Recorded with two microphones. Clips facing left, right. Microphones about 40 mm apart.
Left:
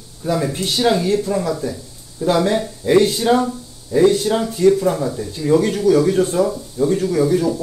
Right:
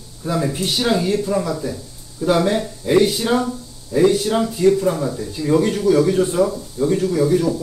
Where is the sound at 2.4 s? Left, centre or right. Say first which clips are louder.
Left 1 dB; centre.